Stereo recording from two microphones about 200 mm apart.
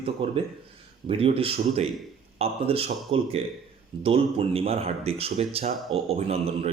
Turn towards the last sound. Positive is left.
turn(degrees=-30)  # may be behind; listen again after turning